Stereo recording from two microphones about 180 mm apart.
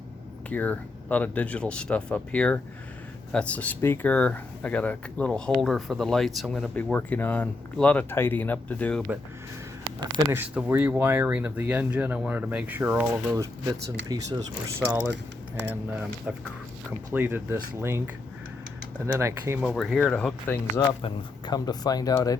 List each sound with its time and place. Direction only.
0.5 s speech: 10° left (ahead or behind)
10.3 s speech: 5° right (ahead or behind)
14.8 s speech: 10° right (ahead or behind)
19.6 s speech: centre (ahead or behind)
20.7 s speech: 25° left (ahead or behind)